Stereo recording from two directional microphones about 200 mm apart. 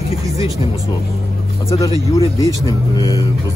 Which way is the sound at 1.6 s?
15° left (ahead or behind).